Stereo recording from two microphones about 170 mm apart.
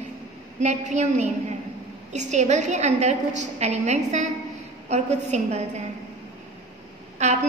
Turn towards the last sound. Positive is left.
turn(degrees=-40)  # may be behind; listen again after turning